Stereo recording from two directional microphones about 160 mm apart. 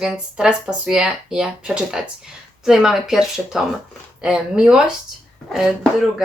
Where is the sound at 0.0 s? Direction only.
5° right (ahead or behind).